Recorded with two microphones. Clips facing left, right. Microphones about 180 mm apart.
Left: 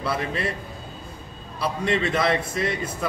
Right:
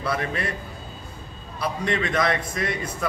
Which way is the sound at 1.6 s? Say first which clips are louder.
Left 2 dB; 30° left (ahead or behind).